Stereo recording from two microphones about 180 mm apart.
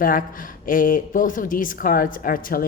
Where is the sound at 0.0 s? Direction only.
50° left (ahead or behind).